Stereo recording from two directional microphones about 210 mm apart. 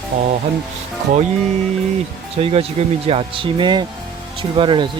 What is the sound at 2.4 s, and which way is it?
Speech, 30° right (ahead or behind).